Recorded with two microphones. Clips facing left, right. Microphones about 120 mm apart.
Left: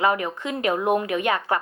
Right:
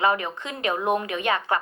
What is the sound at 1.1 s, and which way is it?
Speech, 25° right (ahead or behind).